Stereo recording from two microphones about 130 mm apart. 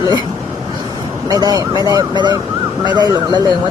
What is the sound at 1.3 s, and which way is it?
Speech, 30° right (ahead or behind).